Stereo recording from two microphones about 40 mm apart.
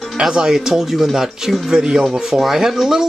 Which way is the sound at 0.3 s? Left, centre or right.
Centre.